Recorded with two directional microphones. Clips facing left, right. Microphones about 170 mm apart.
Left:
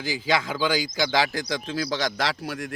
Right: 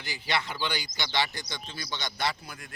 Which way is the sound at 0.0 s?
90° left.